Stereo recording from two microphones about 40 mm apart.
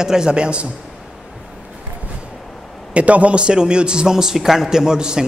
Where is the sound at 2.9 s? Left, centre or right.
Right; by 5.2 s centre.